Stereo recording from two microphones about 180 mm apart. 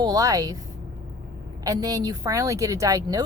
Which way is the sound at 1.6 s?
20° right (ahead or behind).